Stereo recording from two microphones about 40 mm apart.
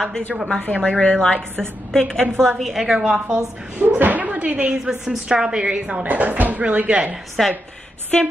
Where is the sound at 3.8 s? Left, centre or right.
Right.